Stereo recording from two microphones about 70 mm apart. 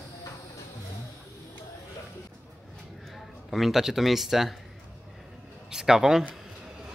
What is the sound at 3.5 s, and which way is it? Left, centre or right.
Speech, centre.